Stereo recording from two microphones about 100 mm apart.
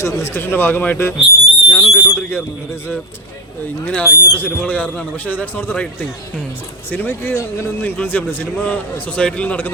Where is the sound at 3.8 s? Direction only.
15° left (ahead or behind).